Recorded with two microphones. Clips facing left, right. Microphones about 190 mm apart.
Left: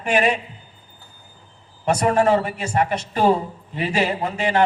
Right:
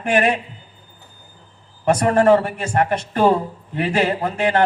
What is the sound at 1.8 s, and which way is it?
A man's voice, 55° right (ahead or behind).